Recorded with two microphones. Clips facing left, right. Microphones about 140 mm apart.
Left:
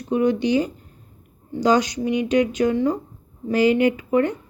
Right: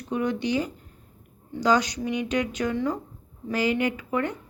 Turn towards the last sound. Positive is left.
turn(degrees=20)  # may be behind; listen again after turning